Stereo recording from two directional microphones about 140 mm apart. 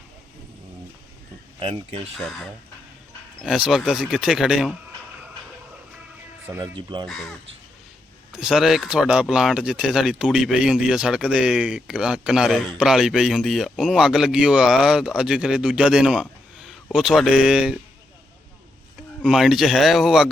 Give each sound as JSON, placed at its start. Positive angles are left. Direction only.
{"t": 1.5, "sound": "speech", "side_deg": -40}
{"t": 2.1, "sound": "speech", "side_deg": 5}
{"t": 6.7, "sound": "speech", "side_deg": -35}
{"t": 8.3, "sound": "speech", "side_deg": -5}
{"t": 19.2, "sound": "speech", "side_deg": -5}